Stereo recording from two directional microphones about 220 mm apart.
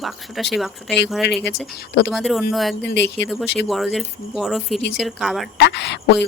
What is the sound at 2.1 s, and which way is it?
Speech, centre (ahead or behind).